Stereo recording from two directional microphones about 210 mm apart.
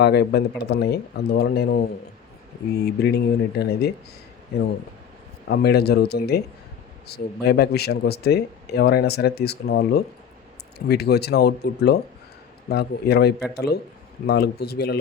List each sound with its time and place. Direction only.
0.0 s speech: 50° left (ahead or behind)
5.5 s speech: 50° left (ahead or behind)